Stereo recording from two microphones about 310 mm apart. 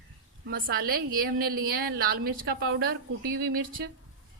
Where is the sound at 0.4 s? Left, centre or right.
Right.